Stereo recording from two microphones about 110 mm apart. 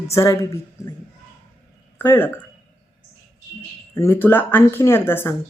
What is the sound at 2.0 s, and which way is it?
Speech, 20° left (ahead or behind).